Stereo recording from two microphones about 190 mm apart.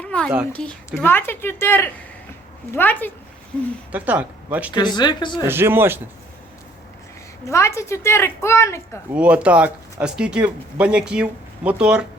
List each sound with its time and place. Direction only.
0.0 s a sound: 5° left (ahead or behind)
0.5 s a woman's voice: 5° left (ahead or behind)
3.9 s speech: 10° right (ahead or behind)
4.7 s speech: 20° left (ahead or behind)
5.5 s speech: 10° right (ahead or behind)
7.4 s a woman's voice: 15° left (ahead or behind)
9.1 s speech: 5° right (ahead or behind)